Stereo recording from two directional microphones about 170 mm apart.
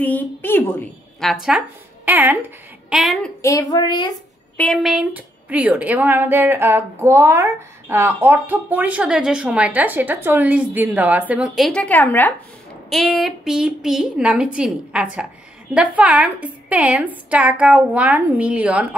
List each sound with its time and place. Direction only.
0.0 s a woman's voice: 10° left (ahead or behind)
1.2 s a woman's voice: centre (ahead or behind)
3.0 s a woman's voice: centre (ahead or behind)
3.4 s a woman's voice: 20° left (ahead or behind)
4.6 s a woman's voice: centre (ahead or behind)